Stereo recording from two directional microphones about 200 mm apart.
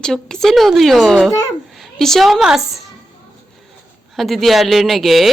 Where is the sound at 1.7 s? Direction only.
Centre (ahead or behind).